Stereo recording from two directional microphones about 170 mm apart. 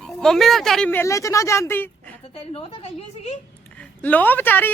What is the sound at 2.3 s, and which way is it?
A woman's voice, 35° left (ahead or behind).